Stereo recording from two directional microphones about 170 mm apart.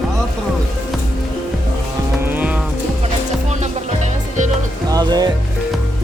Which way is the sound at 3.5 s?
45° right (ahead or behind).